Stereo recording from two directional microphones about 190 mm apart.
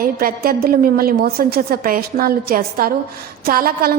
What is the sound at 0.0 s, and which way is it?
A woman's voice, 50° right (ahead or behind).